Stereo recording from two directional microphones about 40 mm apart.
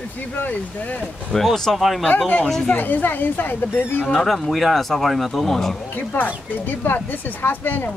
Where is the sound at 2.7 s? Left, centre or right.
Left.